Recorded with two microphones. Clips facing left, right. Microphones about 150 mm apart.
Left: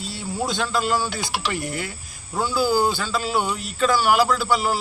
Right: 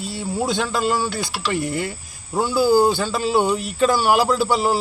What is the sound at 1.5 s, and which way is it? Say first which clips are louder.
A man's voice: right 5 dB; 25° right (ahead or behind).